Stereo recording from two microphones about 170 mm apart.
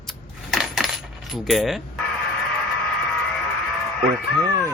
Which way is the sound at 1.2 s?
Centre (ahead or behind).